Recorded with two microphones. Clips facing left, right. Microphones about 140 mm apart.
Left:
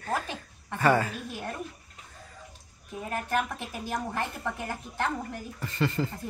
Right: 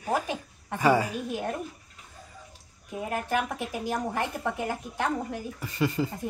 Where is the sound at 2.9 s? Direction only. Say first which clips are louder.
Right 2 dB; 15° right (ahead or behind).